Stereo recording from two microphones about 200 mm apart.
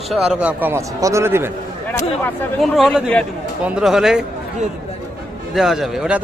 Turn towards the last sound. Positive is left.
turn(degrees=0)  # may be behind; listen again after turning